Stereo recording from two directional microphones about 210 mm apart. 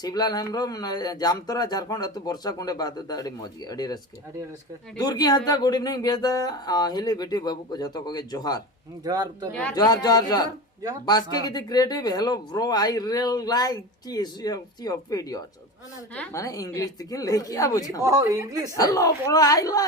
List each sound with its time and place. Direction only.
0.0 s speech: 20° left (ahead or behind)
9.0 s speech: 20° right (ahead or behind)
9.7 s a woman's voice: 20° left (ahead or behind)
18.0 s speech: 15° right (ahead or behind)
18.8 s a woman's voice: 15° left (ahead or behind)